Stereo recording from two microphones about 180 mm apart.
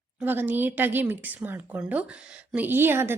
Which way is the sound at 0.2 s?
10° right (ahead or behind).